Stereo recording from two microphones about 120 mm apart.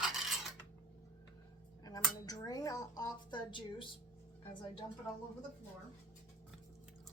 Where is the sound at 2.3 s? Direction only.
30° left (ahead or behind).